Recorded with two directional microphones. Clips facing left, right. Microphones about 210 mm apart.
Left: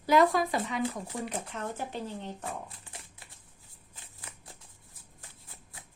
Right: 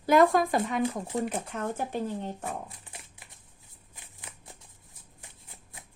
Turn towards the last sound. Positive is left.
turn(degrees=-20)  # may be behind; listen again after turning